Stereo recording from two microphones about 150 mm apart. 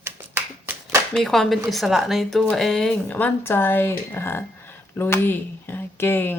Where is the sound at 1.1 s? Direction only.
5° left (ahead or behind).